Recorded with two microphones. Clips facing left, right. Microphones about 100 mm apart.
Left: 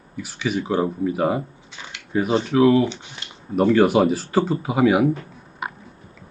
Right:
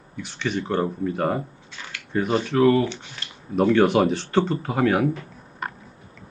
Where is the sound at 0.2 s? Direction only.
5° left (ahead or behind).